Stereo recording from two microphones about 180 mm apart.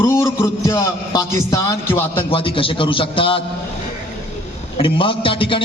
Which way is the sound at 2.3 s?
30° left (ahead or behind).